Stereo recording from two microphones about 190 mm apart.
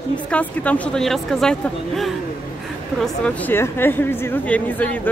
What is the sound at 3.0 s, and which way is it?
A woman's voice, 5° left (ahead or behind).